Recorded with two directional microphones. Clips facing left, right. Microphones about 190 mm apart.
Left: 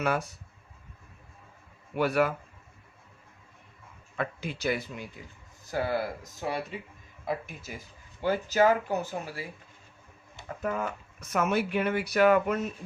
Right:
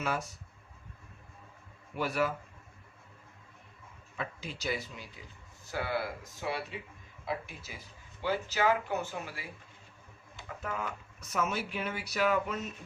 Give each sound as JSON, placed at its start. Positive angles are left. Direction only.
{"t": 2.0, "sound": "speech", "side_deg": 60}
{"t": 4.2, "sound": "speech", "side_deg": 60}
{"t": 5.7, "sound": "speech", "side_deg": 40}
{"t": 10.6, "sound": "speech", "side_deg": 45}